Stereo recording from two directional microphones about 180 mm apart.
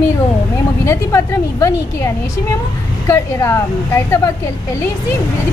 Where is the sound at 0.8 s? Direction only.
15° left (ahead or behind).